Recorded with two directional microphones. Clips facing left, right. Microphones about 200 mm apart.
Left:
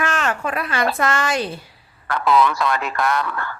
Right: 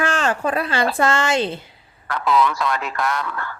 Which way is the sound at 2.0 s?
60° left (ahead or behind).